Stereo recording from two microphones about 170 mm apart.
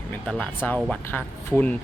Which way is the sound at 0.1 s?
10° left (ahead or behind).